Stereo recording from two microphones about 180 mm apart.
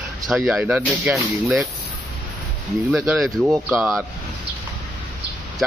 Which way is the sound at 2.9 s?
5° right (ahead or behind).